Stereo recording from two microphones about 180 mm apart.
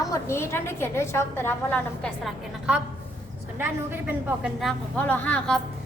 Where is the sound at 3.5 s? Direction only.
10° right (ahead or behind); by 5.6 s 5° left (ahead or behind).